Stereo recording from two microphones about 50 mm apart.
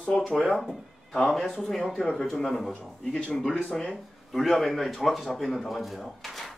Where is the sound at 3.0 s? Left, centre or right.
Left.